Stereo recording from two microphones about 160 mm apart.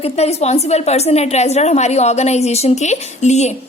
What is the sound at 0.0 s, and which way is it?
A woman's voice, 40° left (ahead or behind).